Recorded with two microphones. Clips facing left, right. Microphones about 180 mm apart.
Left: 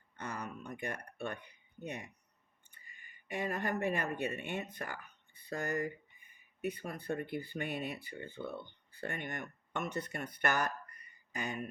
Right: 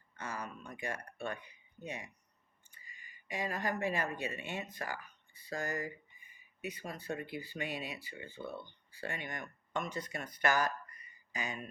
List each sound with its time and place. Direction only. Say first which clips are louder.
0.2 s speech: left 1 dB; 60° left (ahead or behind)